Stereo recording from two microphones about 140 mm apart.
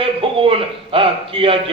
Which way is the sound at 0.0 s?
40° right (ahead or behind).